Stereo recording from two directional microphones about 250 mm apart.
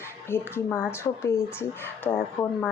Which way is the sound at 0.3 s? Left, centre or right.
Centre.